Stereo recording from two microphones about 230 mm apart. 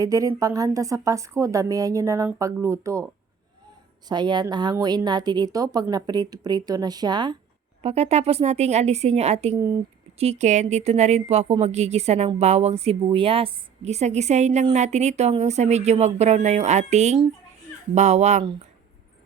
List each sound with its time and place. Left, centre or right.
0.0 s a woman's voice: centre
4.1 s a woman's voice: centre